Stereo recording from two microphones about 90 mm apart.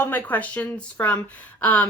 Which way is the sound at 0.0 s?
15° left (ahead or behind).